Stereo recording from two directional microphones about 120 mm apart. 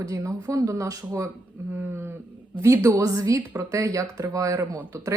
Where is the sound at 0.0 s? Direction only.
25° right (ahead or behind).